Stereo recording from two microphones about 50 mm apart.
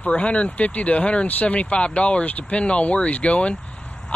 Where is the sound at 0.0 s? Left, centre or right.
Left.